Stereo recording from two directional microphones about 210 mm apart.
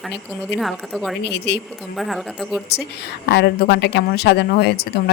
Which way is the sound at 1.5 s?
50° left (ahead or behind).